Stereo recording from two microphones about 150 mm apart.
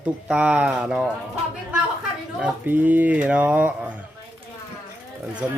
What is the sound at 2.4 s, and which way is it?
Speech, 10° right (ahead or behind).